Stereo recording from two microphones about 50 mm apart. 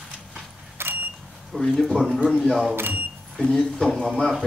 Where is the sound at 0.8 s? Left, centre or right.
Right.